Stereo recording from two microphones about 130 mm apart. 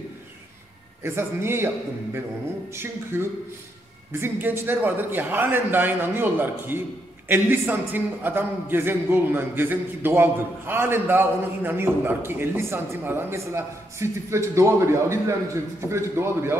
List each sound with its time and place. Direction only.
1.0 s a man's voice: 20° right (ahead or behind)
2.7 s a man's voice: 20° right (ahead or behind)